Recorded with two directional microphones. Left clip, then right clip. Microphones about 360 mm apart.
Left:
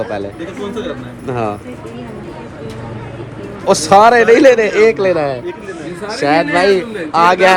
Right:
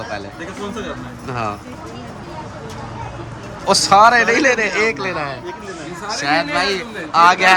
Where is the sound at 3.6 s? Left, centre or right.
Centre.